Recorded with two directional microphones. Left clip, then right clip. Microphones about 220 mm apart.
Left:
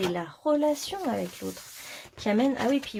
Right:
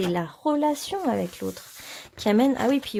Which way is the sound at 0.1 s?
40° right (ahead or behind).